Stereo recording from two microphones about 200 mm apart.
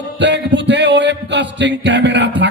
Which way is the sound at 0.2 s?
60° right (ahead or behind).